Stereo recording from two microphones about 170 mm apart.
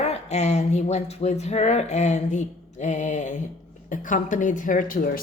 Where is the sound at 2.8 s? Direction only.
45° left (ahead or behind).